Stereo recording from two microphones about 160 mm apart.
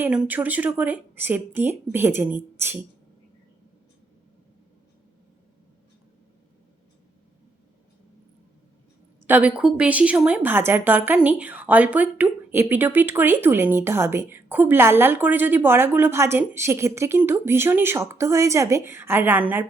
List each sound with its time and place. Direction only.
0.0 s speech: 10° right (ahead or behind)
9.2 s speech: 10° right (ahead or behind)